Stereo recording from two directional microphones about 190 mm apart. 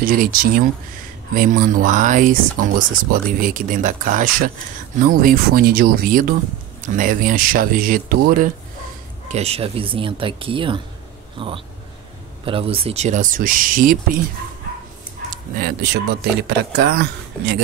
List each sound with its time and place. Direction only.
0.0 s speech: 50° right (ahead or behind)
9.3 s speech: 35° right (ahead or behind)
15.5 s speech: 55° right (ahead or behind)